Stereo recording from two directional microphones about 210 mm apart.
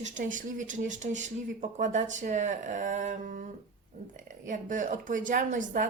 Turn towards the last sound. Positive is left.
turn(degrees=-40)  # may be behind; listen again after turning